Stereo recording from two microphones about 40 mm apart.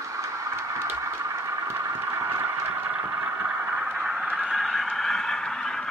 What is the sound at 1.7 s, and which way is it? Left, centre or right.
Vehicle, right.